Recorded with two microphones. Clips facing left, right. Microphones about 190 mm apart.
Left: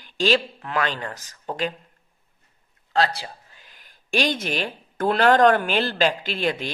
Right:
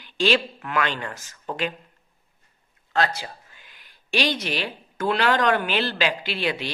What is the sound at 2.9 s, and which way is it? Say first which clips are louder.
Speech: left 1 dB; 35° left (ahead or behind).